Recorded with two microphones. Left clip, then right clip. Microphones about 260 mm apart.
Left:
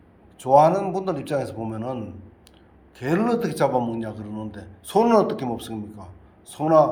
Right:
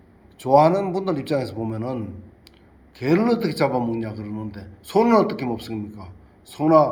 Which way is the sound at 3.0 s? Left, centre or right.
Right.